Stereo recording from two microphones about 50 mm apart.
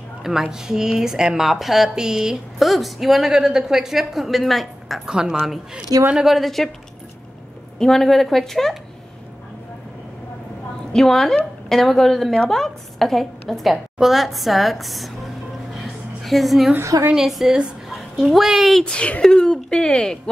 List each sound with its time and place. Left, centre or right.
0.2 s speech: centre
2.6 s a woman's voice: centre
5.0 s speech: centre
6.1 s a woman's voice: centre
7.8 s a woman's voice: centre
11.0 s a woman's voice: centre
15.7 s a sound: centre
17.3 s a woman's voice: centre
18.9 s speech: left
19.2 s speech: centre